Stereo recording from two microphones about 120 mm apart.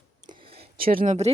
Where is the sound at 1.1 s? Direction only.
70° right (ahead or behind).